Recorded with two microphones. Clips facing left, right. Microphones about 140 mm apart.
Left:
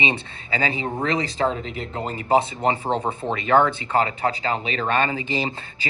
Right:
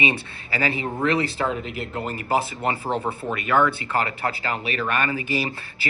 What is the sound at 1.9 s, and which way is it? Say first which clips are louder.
Speech: left 4 dB; 30° left (ahead or behind).